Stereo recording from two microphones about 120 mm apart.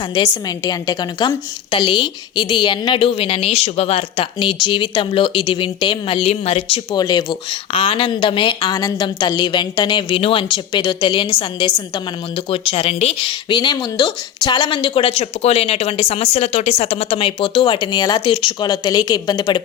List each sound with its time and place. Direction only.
0.1 s speech: 30° left (ahead or behind); by 6.7 s 55° left (ahead or behind)
6.9 s speech: 35° left (ahead or behind)
12.5 s speech: 50° left (ahead or behind)
13.5 s speech: 35° left (ahead or behind)